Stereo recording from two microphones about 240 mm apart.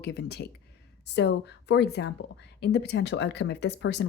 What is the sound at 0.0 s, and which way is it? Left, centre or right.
Speech, left.